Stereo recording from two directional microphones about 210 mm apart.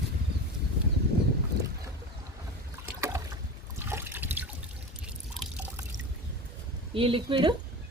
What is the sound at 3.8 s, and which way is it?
Trickle, 10° right (ahead or behind).